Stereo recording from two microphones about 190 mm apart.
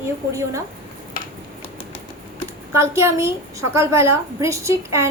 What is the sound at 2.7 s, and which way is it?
A woman's voice, 15° right (ahead or behind).